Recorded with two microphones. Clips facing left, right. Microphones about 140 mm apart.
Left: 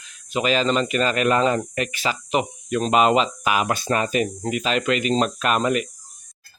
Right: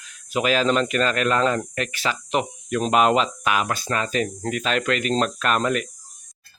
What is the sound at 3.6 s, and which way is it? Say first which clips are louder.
A man's voice: left 3 dB; 20° left (ahead or behind).